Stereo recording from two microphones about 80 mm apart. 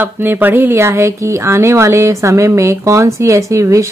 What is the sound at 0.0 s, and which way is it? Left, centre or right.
A man's voice, right.